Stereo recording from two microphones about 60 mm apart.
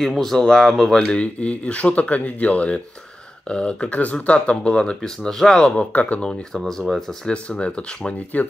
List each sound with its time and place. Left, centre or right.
0.2 s speech: centre
5.9 s speech: left
6.2 s speech: centre
7.2 s speech: centre